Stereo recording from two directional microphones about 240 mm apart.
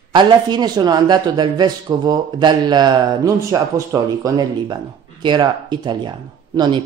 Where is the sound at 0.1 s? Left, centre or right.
Centre.